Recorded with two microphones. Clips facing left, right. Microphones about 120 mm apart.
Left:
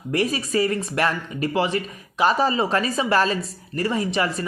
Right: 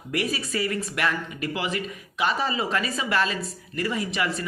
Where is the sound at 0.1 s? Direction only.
35° left (ahead or behind).